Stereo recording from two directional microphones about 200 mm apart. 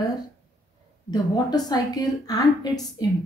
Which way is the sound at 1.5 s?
20° left (ahead or behind).